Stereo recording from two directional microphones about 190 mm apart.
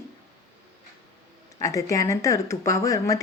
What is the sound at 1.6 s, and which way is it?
Speech, 15° left (ahead or behind).